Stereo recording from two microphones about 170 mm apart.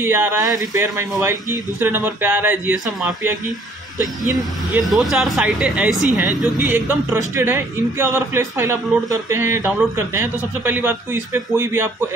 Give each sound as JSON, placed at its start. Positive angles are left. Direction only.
{"t": 0.0, "sound": "speech", "side_deg": -15}
{"t": 4.4, "sound": "speech", "side_deg": 0}